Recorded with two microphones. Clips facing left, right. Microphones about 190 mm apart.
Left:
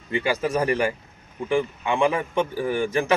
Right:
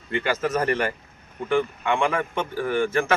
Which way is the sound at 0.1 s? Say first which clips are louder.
Left 1 dB; 15° left (ahead or behind).